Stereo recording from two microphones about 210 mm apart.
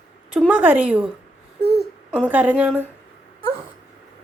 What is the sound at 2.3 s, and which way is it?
Speech, 10° right (ahead or behind).